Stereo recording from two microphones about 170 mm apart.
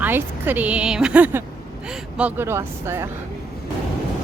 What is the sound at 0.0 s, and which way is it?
Speech, 10° right (ahead or behind).